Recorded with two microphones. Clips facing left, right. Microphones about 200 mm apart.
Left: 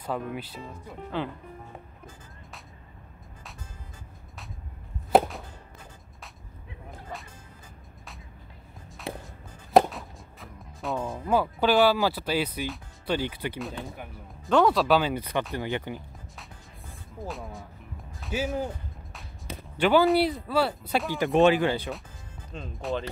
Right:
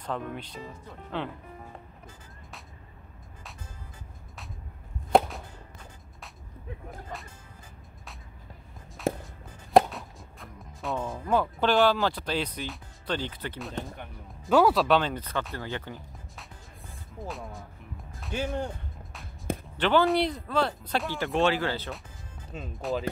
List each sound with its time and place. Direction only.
0.0 s speech: 5° left (ahead or behind)
5.1 s whip: 5° left (ahead or behind)
9.1 s walk: 45° right (ahead or behind)
9.5 s music: centre (ahead or behind)
13.8 s speech: 5° left (ahead or behind)
17.2 s speech: centre (ahead or behind)
19.5 s a sound: 50° right (ahead or behind)
19.8 s speech: 5° left (ahead or behind)
22.5 s speech: 5° right (ahead or behind)